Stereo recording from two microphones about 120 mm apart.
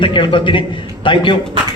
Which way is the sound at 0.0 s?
45° left (ahead or behind).